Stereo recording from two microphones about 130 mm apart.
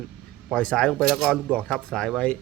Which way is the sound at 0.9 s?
Centre (ahead or behind).